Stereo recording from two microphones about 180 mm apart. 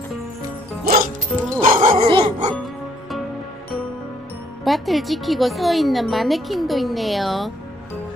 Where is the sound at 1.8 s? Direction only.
30° right (ahead or behind).